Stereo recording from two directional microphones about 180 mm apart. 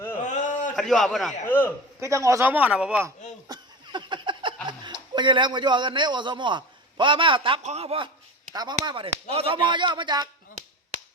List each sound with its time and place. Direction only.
0.2 s a sound: 45° left (ahead or behind)
0.8 s a man's voice: centre (ahead or behind)
1.5 s a man's voice: 10° left (ahead or behind)
2.0 s speech: 15° right (ahead or behind)
3.5 s a sound: 25° right (ahead or behind)
4.8 s a man's voice: 25° right (ahead or behind)